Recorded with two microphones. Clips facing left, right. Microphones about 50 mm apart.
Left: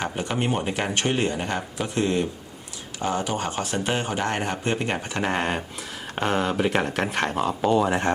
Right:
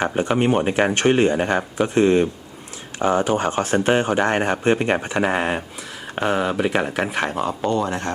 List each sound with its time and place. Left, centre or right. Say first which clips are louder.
0.2 s speech: right 8 dB; right
5.2 s speech: right 4 dB; centre